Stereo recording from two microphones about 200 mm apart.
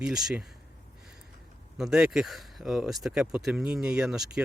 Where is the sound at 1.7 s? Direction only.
5° right (ahead or behind).